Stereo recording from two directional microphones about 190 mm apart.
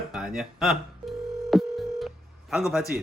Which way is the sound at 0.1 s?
5° right (ahead or behind).